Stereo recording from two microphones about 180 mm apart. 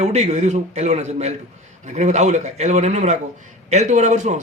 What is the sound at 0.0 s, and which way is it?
A man's voice, 40° right (ahead or behind).